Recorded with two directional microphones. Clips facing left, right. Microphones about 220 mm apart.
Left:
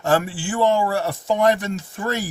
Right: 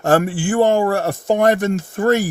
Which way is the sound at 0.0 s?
50° right (ahead or behind).